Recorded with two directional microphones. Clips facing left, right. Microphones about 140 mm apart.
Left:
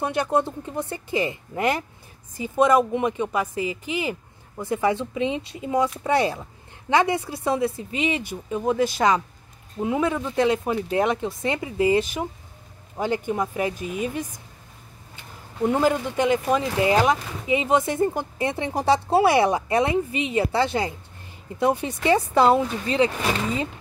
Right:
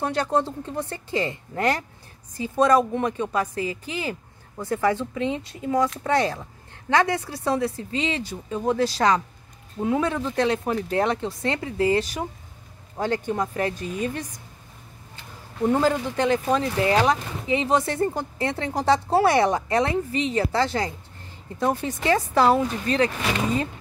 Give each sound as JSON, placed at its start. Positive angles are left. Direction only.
{"t": 0.0, "sound": "a woman's voice", "side_deg": 15}
{"t": 2.9, "sound": "a woman's voice", "side_deg": 15}
{"t": 15.6, "sound": "a woman's voice", "side_deg": 10}